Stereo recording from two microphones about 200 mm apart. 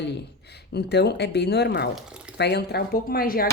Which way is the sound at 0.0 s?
55° left (ahead or behind).